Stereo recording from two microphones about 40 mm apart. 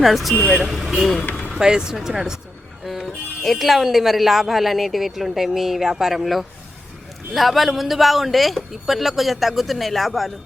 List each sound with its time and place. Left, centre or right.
0.0 s speech: centre
1.5 s speech: centre
2.8 s music: centre
3.4 s speech: centre